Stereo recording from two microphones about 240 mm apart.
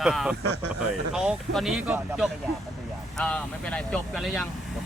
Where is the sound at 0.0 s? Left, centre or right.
Centre.